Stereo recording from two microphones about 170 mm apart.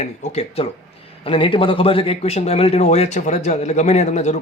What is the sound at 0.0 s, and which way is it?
A man's voice, 40° left (ahead or behind).